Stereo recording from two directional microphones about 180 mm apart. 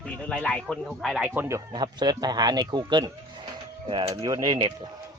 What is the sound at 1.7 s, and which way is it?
Speech, 25° right (ahead or behind).